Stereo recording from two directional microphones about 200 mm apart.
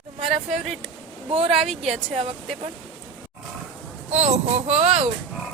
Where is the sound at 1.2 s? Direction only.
30° right (ahead or behind).